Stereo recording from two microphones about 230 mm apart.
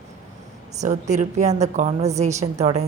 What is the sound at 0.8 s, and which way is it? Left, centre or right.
A woman's voice, right.